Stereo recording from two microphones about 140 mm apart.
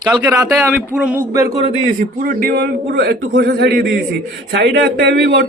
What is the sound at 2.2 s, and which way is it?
Speech, 90° right.